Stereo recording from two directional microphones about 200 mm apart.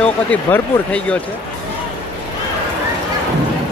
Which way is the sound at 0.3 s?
5° left (ahead or behind).